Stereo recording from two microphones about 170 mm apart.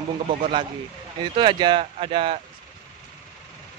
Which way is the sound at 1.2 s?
25° right (ahead or behind).